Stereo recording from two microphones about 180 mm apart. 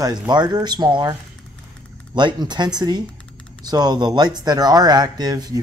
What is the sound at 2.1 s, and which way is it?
Speech, 25° right (ahead or behind).